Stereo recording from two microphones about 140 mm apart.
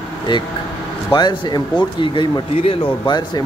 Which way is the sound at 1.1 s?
30° left (ahead or behind).